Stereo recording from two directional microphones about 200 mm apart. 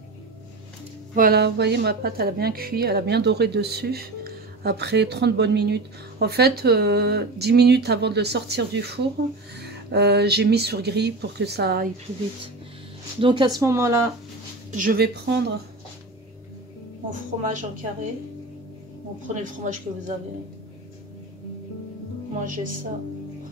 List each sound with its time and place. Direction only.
1.1 s a woman's voice: 50° right (ahead or behind)
13.2 s speech: 20° right (ahead or behind)
14.7 s speech: 45° right (ahead or behind)
17.1 s speech: 40° right (ahead or behind)
19.2 s speech: 40° right (ahead or behind)